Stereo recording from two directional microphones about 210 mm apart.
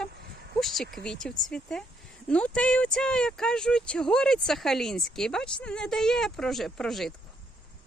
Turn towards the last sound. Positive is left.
turn(degrees=0)  # may be behind; listen again after turning